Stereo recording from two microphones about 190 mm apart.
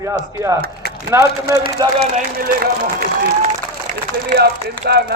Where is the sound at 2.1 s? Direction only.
50° right (ahead or behind).